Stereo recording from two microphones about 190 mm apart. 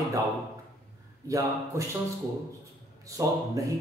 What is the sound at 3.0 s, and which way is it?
Speech, 15° right (ahead or behind).